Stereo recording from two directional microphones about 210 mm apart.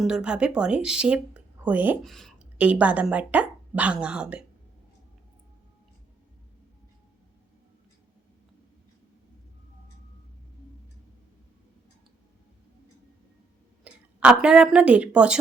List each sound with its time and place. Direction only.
0.0 s speech: 5° right (ahead or behind)
13.8 s a woman's voice: 5° right (ahead or behind)